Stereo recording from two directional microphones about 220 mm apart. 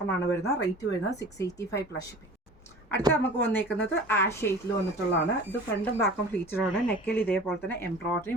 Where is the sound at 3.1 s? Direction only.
10° left (ahead or behind).